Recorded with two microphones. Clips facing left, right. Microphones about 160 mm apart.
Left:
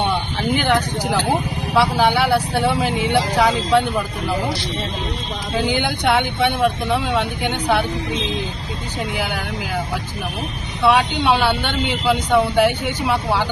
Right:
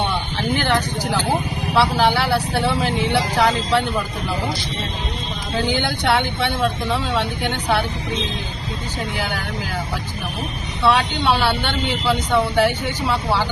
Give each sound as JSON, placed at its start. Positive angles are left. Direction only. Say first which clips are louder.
{"t": 0.3, "sound": "speech", "louder": "left 1 dB", "side_deg": 10}
{"t": 5.5, "sound": "speech", "louder": "left 1 dB", "side_deg": 15}
{"t": 10.8, "sound": "speech", "louder": "left 2 dB", "side_deg": 15}